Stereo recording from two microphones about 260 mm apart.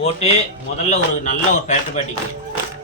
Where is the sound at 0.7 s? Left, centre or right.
Left.